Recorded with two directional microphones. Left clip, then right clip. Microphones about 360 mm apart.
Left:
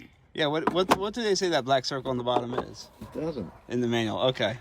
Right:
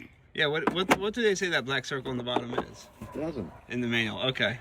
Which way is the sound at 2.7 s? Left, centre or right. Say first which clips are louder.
Left 1 dB; left.